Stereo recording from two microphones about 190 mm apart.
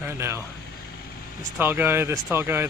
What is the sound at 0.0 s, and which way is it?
Speech, 15° right (ahead or behind).